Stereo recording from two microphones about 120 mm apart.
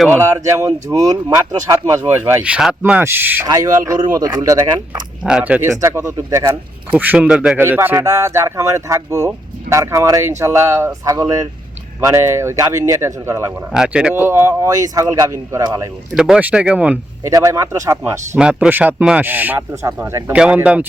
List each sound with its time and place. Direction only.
0.1 s speech: 25° right (ahead or behind)
2.5 s speech: 5° right (ahead or behind)
3.0 s speech: 20° right (ahead or behind)
3.4 s speech: 30° right (ahead or behind)
5.2 s speech: 10° right (ahead or behind)
5.6 s speech: 25° right (ahead or behind)
6.9 s speech: 15° right (ahead or behind)
13.7 s speech: 5° right (ahead or behind)
14.2 s speech: 20° right (ahead or behind)
16.1 s speech: 5° right (ahead or behind)
17.2 s speech: 25° right (ahead or behind)
18.3 s speech: 10° right (ahead or behind); by 20.3 s 25° right (ahead or behind)
20.3 s speech: 10° right (ahead or behind)